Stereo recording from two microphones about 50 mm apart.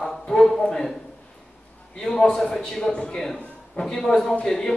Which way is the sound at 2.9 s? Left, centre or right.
Left.